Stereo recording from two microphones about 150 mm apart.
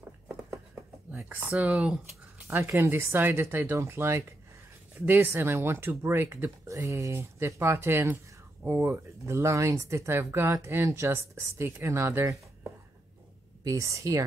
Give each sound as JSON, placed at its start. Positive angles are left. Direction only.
{"t": 1.1, "sound": "speech", "side_deg": -10}
{"t": 13.7, "sound": "speech", "side_deg": -20}